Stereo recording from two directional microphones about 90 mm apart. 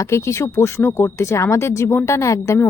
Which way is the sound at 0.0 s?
35° left (ahead or behind).